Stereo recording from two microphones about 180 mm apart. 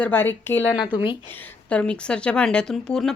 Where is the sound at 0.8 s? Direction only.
25° left (ahead or behind).